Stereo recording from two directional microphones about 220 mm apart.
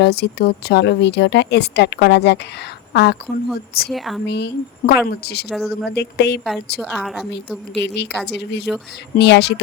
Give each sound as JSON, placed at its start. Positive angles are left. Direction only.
{"t": 0.0, "sound": "speech", "side_deg": 50}
{"t": 3.8, "sound": "a woman's voice", "side_deg": 0}
{"t": 4.3, "sound": "speech", "side_deg": 50}
{"t": 5.5, "sound": "a woman's voice", "side_deg": 0}
{"t": 5.9, "sound": "speech", "side_deg": 50}
{"t": 6.7, "sound": "a woman's voice", "side_deg": 0}
{"t": 7.7, "sound": "speech", "side_deg": 50}